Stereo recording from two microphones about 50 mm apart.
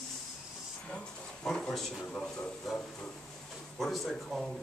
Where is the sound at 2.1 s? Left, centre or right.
Left.